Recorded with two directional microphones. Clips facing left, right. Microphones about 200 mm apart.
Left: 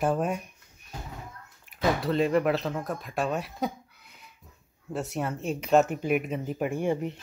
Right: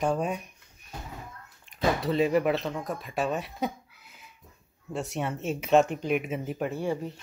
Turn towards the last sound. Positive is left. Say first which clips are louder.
# left 3 dB
turn(degrees=20)  # may be behind; listen again after turning